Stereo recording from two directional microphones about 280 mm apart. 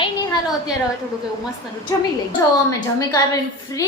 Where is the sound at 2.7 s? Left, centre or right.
Centre.